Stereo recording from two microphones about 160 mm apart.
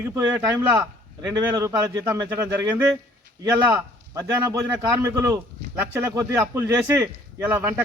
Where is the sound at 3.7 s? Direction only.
15° right (ahead or behind).